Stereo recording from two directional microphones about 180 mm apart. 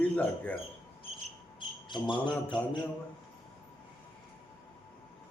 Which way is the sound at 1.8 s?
25° left (ahead or behind).